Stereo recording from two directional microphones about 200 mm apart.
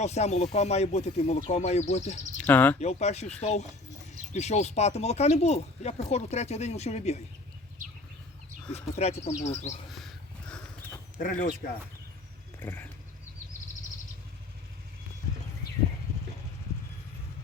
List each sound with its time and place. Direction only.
0.0 s speech: 35° left (ahead or behind)
2.4 s speech: 10° left (ahead or behind)
2.8 s speech: 35° left (ahead or behind)
8.7 s speech: 30° left (ahead or behind)
11.2 s speech: 40° left (ahead or behind)
12.5 s a sound: 10° left (ahead or behind)